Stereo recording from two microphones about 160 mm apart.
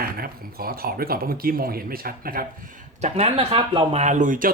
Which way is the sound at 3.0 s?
45° right (ahead or behind).